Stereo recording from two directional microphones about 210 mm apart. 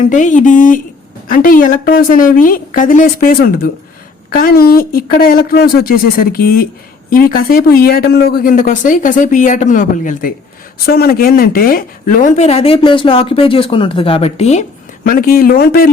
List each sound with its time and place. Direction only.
0.0 s speech: 35° left (ahead or behind)
15.0 s speech: 45° left (ahead or behind)